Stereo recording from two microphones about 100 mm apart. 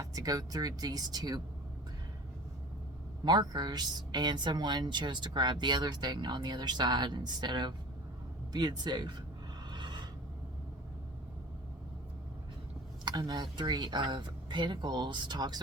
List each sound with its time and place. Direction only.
0.0 s speech: 35° right (ahead or behind)
3.2 s speech: 45° right (ahead or behind)
9.6 s a sound: 50° right (ahead or behind)
13.1 s speech: 45° right (ahead or behind)